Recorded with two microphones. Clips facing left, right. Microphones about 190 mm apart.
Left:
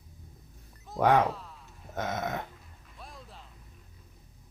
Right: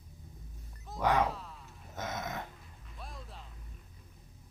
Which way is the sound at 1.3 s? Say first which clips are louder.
Left 2 dB; centre (ahead or behind).